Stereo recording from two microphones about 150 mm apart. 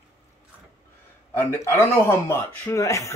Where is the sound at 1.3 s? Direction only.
15° left (ahead or behind).